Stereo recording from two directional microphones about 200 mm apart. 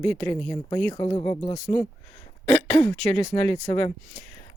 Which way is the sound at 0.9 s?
25° left (ahead or behind).